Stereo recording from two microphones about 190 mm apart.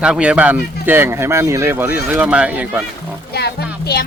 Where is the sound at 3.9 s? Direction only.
55° left (ahead or behind).